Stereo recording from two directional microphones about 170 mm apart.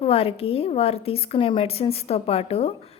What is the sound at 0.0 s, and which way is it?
A woman's voice, 35° left (ahead or behind).